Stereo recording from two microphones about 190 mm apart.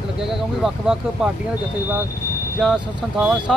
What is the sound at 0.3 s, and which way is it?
Speech, centre (ahead or behind).